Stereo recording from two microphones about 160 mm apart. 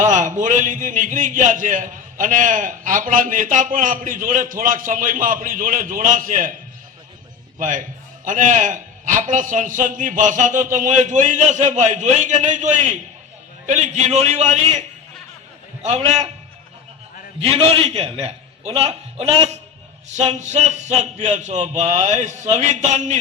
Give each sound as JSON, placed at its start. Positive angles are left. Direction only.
{"t": 0.0, "sound": "speech", "side_deg": -50}
{"t": 7.6, "sound": "a man's voice", "side_deg": -55}
{"t": 17.4, "sound": "a man's voice", "side_deg": -40}